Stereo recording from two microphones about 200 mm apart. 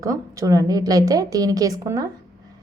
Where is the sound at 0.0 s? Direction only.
15° right (ahead or behind).